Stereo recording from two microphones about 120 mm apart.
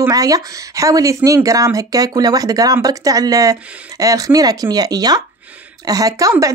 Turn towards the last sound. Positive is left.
turn(degrees=-30)  # may be behind; listen again after turning